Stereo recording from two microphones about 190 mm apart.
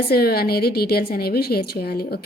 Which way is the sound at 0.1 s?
55° left (ahead or behind).